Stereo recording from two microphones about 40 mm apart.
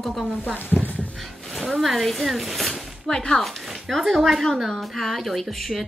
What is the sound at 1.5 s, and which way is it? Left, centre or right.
Speech, centre.